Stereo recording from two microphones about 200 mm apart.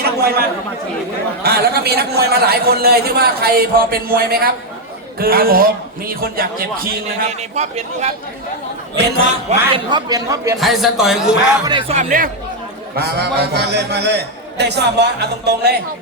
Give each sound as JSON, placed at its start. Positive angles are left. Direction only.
{"t": 0.0, "sound": "chatter", "side_deg": -50}
{"t": 1.5, "sound": "a man's voice", "side_deg": -55}
{"t": 7.5, "sound": "speech", "side_deg": -35}
{"t": 9.0, "sound": "a sound", "side_deg": -60}
{"t": 9.5, "sound": "a man's voice", "side_deg": -25}
{"t": 10.6, "sound": "speech", "side_deg": 0}
{"t": 11.6, "sound": "speech", "side_deg": -25}
{"t": 13.0, "sound": "a sound", "side_deg": -55}